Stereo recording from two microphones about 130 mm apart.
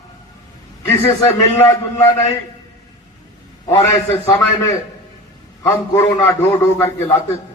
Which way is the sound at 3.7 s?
20° left (ahead or behind).